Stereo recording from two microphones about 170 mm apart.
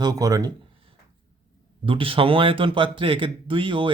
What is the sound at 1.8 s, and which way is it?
Speech, 30° right (ahead or behind).